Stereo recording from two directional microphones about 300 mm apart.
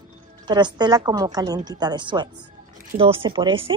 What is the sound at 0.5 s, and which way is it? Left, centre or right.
A woman's voice, centre.